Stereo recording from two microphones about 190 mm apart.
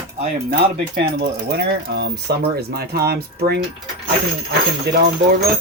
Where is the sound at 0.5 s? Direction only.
60° right (ahead or behind).